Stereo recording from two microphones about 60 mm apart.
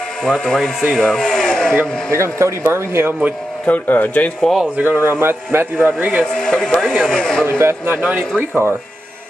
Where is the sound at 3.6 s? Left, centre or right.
Left.